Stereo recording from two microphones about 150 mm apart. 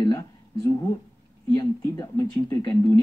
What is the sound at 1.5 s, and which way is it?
Speech, 25° left (ahead or behind).